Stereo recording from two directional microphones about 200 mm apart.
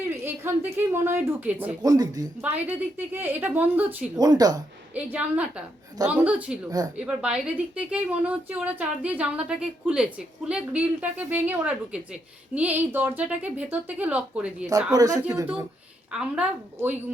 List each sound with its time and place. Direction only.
0.1 s speech: 10° right (ahead or behind)
4.9 s speech: 5° right (ahead or behind)
6.7 s speech: 20° right (ahead or behind)
7.2 s speech: 5° right (ahead or behind)
14.9 s a woman's voice: 20° right (ahead or behind)